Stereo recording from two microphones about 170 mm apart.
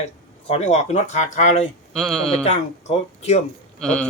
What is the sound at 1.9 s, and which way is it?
Speech, centre (ahead or behind).